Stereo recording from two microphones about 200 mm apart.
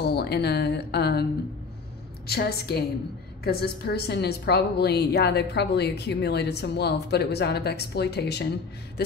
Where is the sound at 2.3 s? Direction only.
50° left (ahead or behind).